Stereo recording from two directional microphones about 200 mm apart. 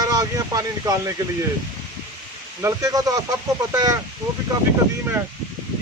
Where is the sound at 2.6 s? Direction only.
15° right (ahead or behind).